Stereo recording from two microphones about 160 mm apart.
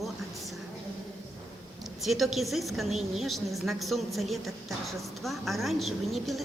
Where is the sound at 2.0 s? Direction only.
Centre (ahead or behind).